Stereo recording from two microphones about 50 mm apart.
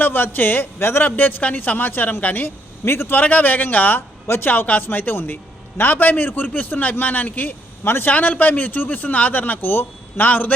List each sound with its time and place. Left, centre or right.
0.0 s a man's voice: left
3.2 s a man's voice: left
7.9 s a man's voice: left
8.1 s a man's voice: left